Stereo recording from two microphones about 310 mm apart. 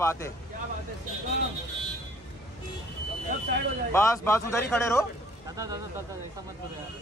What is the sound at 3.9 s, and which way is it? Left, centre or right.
Speech, centre.